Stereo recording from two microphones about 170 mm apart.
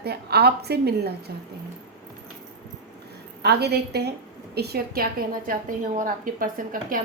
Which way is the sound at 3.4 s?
75° right (ahead or behind).